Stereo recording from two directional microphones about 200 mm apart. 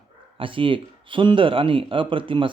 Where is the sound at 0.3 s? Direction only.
25° right (ahead or behind).